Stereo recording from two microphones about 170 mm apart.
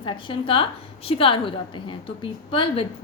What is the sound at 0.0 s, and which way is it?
A woman's voice, 30° left (ahead or behind).